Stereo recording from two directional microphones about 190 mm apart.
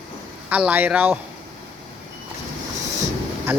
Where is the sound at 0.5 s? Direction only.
10° right (ahead or behind).